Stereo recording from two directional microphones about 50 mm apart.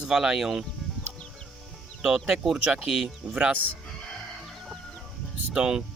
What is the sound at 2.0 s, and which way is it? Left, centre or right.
Speech, centre.